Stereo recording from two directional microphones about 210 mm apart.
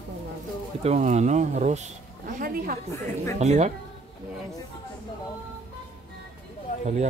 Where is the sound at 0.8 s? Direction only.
30° right (ahead or behind).